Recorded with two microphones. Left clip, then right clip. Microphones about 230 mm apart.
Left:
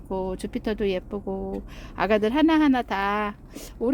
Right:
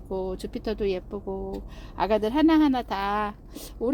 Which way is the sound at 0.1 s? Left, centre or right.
Centre.